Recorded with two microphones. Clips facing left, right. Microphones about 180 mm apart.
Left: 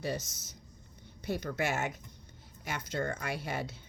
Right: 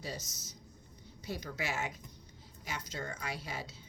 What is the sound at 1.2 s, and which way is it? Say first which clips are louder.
A woman's voice: left 6 dB; 55° left (ahead or behind).